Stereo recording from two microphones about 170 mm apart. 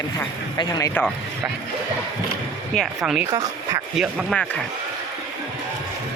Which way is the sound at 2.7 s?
Centre (ahead or behind).